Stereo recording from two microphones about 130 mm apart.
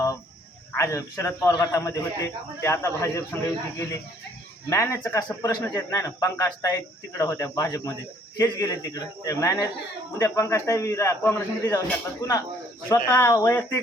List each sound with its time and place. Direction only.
0.8 s speech: 25° left (ahead or behind)